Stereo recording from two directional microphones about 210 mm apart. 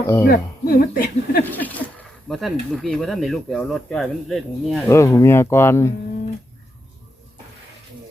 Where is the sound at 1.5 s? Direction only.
10° left (ahead or behind).